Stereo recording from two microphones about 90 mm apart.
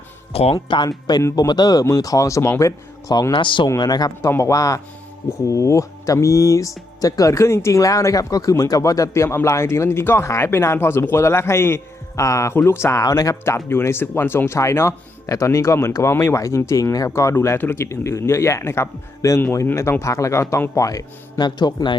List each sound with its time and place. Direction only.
0.5 s speech: 60° left (ahead or behind); by 3.3 s 40° left (ahead or behind)
3.3 s speech: 65° left (ahead or behind)
3.8 s speech: 50° left (ahead or behind)
4.3 s a man's voice: 35° left (ahead or behind); by 21.9 s 55° left (ahead or behind)